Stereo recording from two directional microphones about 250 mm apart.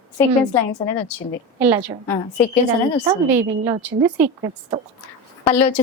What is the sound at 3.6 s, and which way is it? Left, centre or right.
Speech, centre.